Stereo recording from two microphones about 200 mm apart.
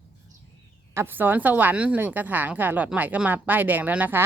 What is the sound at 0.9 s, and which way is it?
A woman's voice, 10° right (ahead or behind).